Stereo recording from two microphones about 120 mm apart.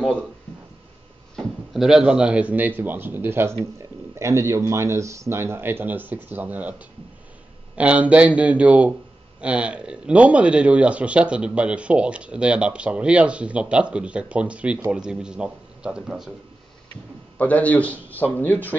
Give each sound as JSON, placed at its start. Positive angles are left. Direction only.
{"t": 1.3, "sound": "speech", "side_deg": -5}
{"t": 7.7, "sound": "a man's voice", "side_deg": -10}
{"t": 17.4, "sound": "a man's voice", "side_deg": 10}